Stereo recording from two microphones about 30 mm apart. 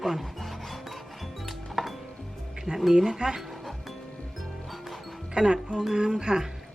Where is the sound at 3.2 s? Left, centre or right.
Right.